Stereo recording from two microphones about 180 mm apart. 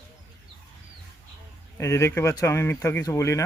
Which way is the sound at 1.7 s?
15° left (ahead or behind).